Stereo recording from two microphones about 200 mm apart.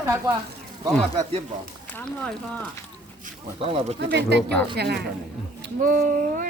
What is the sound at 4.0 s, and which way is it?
Speech, 60° right (ahead or behind).